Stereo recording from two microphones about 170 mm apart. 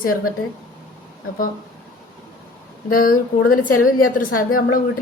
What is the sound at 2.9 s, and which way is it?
A woman's voice, 55° left (ahead or behind).